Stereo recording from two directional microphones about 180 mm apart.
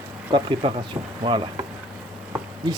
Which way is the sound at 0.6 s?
25° right (ahead or behind).